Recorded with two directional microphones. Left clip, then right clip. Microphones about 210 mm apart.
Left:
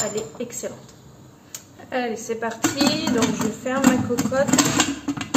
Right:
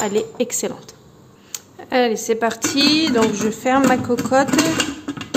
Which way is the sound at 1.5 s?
50° right (ahead or behind).